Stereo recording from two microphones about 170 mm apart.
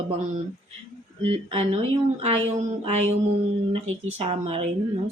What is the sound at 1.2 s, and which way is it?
Speech, 35° right (ahead or behind).